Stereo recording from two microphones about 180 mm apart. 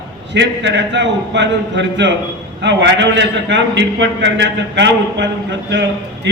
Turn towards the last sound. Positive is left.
turn(degrees=-80)